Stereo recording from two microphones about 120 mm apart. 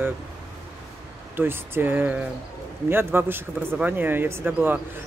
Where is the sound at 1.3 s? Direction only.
20° right (ahead or behind).